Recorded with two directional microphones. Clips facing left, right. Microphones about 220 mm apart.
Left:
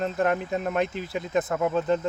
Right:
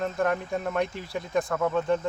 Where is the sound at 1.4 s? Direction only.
20° left (ahead or behind).